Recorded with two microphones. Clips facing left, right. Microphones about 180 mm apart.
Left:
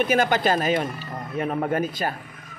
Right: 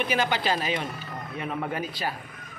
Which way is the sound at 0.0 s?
45° left (ahead or behind).